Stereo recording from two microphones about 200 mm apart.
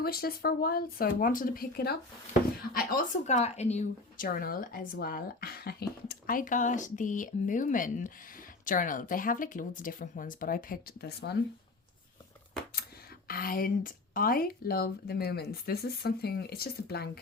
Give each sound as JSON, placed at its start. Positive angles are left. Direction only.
{"t": 0.0, "sound": "speech", "side_deg": 50}
{"t": 13.2, "sound": "speech", "side_deg": 45}